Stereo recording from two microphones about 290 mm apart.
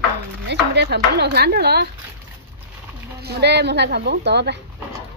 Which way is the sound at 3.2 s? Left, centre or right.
Right.